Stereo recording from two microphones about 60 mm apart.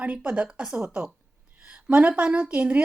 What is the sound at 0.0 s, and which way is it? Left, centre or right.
A woman's voice, right.